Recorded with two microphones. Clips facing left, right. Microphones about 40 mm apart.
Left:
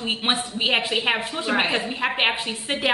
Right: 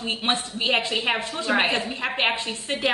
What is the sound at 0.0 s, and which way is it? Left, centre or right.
A woman's voice, left.